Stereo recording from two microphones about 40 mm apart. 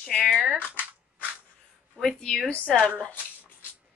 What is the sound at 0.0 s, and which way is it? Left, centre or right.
Speech, centre.